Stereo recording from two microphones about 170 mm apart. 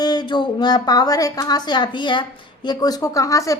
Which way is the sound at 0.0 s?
25° left (ahead or behind).